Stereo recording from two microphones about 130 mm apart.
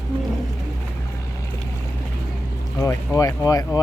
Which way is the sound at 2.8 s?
25° left (ahead or behind).